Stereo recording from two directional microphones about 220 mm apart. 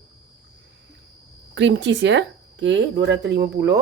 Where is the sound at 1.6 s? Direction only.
55° right (ahead or behind).